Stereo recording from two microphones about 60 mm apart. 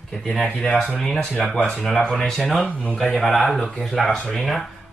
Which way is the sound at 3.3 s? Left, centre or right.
Centre.